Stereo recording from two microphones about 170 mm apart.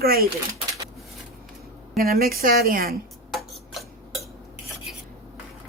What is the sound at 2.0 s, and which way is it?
Speech, 60° right (ahead or behind).